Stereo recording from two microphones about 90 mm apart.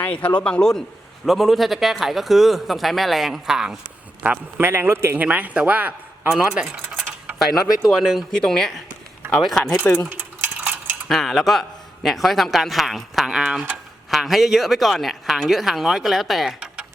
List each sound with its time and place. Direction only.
0.0 s a man's voice: 15° left (ahead or behind); by 4.6 s 15° right (ahead or behind)
4.6 s a man's voice: 25° right (ahead or behind)
5.2 s speech: 15° right (ahead or behind)
7.9 s a man's voice: centre (ahead or behind)
9.6 s speech: 10° left (ahead or behind)
10.1 s a sound: 20° right (ahead or behind)
11.1 s a man's voice: 5° left (ahead or behind)